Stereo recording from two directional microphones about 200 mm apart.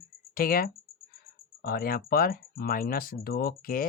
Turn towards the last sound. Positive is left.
turn(degrees=45)  # may be behind; listen again after turning